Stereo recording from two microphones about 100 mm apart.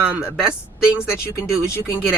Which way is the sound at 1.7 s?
30° left (ahead or behind).